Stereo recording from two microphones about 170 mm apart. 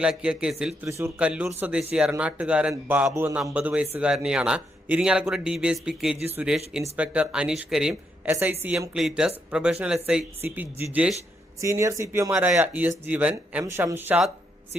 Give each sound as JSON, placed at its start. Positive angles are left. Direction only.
{"t": 0.0, "sound": "speech", "side_deg": -5}